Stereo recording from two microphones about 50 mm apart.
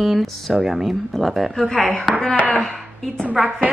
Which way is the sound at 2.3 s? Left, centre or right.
Left.